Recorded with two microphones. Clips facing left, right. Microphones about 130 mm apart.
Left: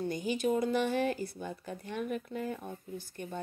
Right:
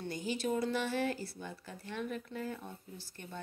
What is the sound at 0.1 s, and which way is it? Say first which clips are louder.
Speech: left 2 dB; 15° left (ahead or behind).